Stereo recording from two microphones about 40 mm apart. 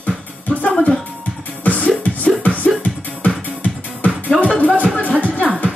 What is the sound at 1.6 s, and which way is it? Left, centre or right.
Music, left.